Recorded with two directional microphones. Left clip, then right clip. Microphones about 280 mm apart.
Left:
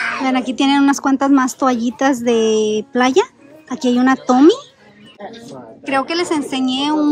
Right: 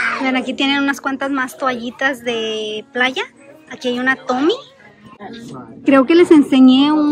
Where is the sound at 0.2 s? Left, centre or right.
Centre.